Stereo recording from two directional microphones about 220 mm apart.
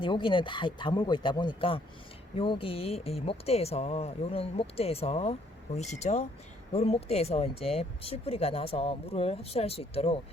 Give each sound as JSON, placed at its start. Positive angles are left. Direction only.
{"t": 0.0, "sound": "speech", "side_deg": 20}